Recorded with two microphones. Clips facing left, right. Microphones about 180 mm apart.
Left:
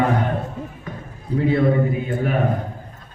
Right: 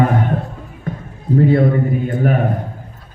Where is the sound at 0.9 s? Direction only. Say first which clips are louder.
Right 7 dB; 50° right (ahead or behind).